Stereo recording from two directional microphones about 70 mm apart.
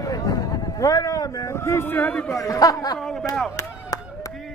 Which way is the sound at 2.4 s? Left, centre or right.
Left.